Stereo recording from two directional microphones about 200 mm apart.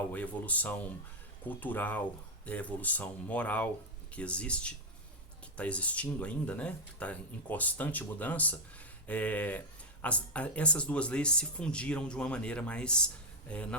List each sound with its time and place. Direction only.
0.1 s speech: 5° left (ahead or behind)